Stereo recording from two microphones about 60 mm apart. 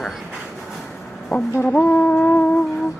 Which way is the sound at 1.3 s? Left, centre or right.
Centre.